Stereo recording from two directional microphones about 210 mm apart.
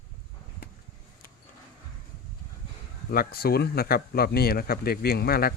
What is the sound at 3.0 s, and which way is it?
Speech, 45° left (ahead or behind).